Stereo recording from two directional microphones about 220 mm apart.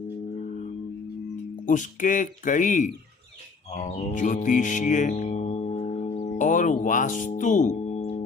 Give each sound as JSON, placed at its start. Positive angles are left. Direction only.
{"t": 1.6, "sound": "speech", "side_deg": 35}